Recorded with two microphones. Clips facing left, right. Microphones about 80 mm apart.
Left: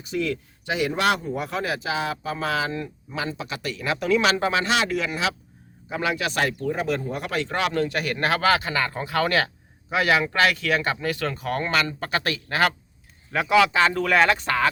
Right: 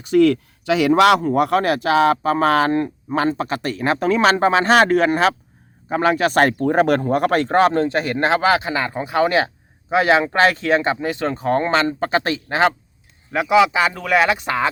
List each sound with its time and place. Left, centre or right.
0.0 s a man's voice: right; by 14.7 s centre